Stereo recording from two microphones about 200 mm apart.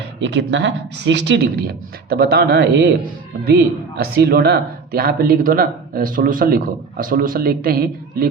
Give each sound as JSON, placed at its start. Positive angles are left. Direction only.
{"t": 0.2, "sound": "speech", "side_deg": -65}